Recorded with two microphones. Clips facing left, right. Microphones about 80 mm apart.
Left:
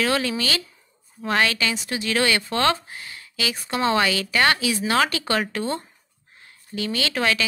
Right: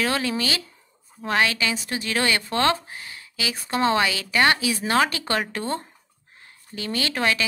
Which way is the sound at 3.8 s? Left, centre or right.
Centre.